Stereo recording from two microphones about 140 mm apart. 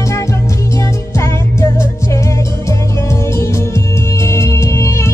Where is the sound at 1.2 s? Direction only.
20° left (ahead or behind).